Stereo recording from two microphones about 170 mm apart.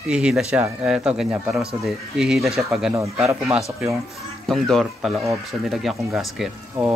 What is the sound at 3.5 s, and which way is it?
Speech, 5° right (ahead or behind).